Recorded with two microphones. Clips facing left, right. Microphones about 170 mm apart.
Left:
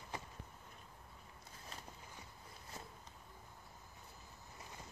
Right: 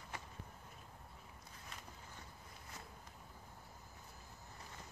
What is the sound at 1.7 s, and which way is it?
Walk, 30° left (ahead or behind).